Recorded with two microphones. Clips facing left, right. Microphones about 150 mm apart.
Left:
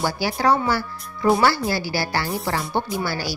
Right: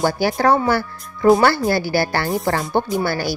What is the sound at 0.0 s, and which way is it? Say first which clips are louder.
A woman's voice: right 4 dB; 50° right (ahead or behind).